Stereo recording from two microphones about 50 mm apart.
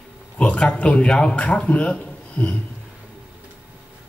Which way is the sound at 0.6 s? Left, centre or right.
Left.